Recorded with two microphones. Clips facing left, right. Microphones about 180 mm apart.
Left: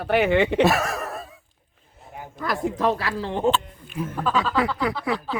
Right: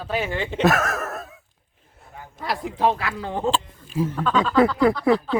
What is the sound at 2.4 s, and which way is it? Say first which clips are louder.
Speech: even; 45° left (ahead or behind).